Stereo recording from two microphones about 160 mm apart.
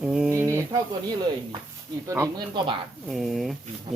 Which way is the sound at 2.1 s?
20° right (ahead or behind).